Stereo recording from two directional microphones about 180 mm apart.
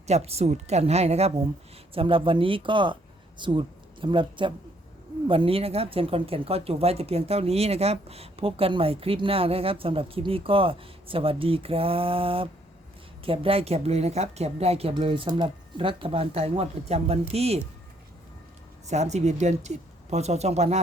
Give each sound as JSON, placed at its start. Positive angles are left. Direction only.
{"t": 0.1, "sound": "speech", "side_deg": -35}
{"t": 18.9, "sound": "speech", "side_deg": -40}